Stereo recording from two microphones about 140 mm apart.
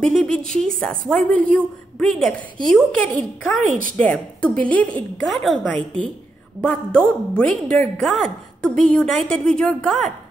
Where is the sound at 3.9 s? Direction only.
10° left (ahead or behind).